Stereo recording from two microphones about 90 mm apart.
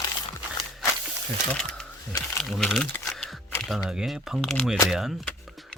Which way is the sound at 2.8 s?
5° left (ahead or behind).